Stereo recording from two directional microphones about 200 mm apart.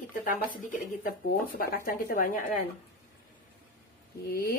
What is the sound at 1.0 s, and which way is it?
Speech, 45° left (ahead or behind).